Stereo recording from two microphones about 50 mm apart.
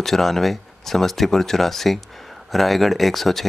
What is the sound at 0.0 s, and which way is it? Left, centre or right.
Speech, centre.